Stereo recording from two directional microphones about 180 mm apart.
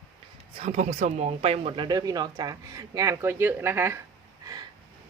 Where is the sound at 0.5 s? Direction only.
40° right (ahead or behind); by 4.0 s 15° right (ahead or behind).